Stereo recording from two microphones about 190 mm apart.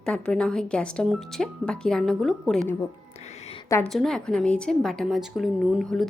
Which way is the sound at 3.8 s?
Centre (ahead or behind).